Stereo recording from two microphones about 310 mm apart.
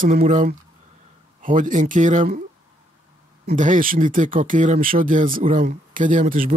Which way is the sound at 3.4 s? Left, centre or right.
Right.